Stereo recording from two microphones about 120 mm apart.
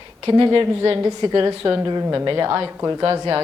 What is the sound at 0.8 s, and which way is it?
Speech, 25° right (ahead or behind).